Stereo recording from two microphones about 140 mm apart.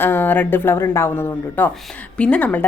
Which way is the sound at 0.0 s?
15° left (ahead or behind).